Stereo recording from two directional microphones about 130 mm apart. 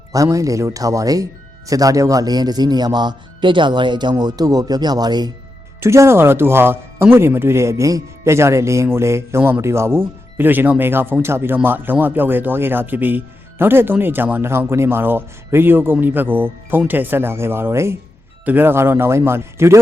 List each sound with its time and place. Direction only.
0.1 s speech: 25° right (ahead or behind)